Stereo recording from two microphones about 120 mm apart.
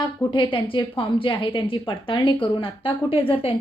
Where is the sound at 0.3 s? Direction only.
45° left (ahead or behind).